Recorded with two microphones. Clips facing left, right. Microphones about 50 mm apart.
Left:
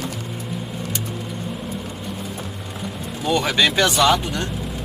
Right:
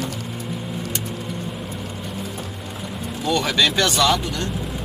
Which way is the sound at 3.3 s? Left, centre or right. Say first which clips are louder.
Left 1 dB; centre.